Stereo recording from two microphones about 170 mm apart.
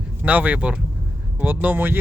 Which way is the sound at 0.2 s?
10° right (ahead or behind).